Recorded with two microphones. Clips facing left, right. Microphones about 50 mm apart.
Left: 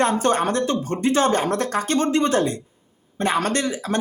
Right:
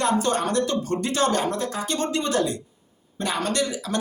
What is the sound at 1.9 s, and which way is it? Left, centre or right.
Speech, left.